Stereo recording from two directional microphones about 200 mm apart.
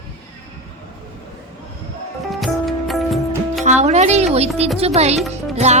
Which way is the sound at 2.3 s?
Centre (ahead or behind).